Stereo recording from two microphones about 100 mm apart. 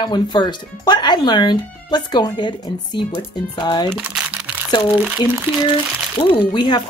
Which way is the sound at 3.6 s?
45° left (ahead or behind).